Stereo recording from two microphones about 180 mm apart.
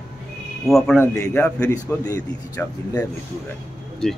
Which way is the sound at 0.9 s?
15° left (ahead or behind).